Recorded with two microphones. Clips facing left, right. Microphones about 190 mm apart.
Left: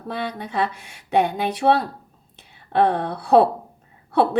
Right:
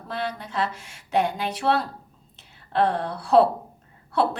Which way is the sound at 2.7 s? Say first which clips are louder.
Left 3 dB; 60° left (ahead or behind).